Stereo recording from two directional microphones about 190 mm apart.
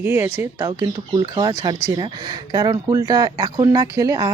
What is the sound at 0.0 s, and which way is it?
Speech, 15° right (ahead or behind).